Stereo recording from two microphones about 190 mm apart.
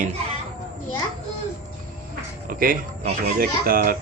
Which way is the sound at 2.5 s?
50° right (ahead or behind).